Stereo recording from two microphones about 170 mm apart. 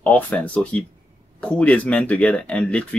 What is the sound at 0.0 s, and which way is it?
Speech, 5° left (ahead or behind).